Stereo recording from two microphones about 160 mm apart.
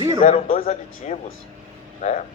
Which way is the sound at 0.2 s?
50° left (ahead or behind).